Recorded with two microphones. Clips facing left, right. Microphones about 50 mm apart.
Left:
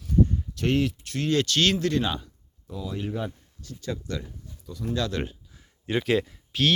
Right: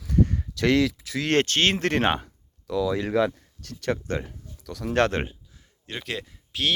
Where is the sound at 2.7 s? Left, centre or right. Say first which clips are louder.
Right 8 dB; right.